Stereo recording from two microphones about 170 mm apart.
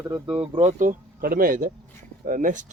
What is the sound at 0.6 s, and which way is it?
Speech, 50° right (ahead or behind).